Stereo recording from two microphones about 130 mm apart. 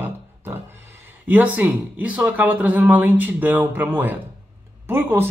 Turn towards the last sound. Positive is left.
turn(degrees=-15)  # may be behind; listen again after turning